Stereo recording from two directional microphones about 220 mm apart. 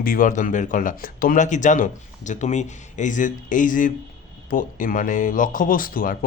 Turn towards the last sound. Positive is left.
turn(degrees=40)  # may be behind; listen again after turning